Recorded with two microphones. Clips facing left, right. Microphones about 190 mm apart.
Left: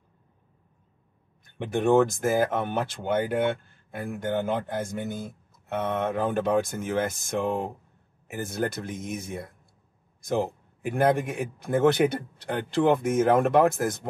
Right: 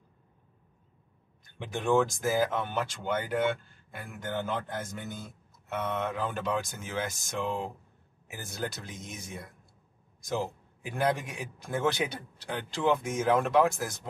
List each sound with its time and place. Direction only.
1.6 s a man's voice: 60° left (ahead or behind)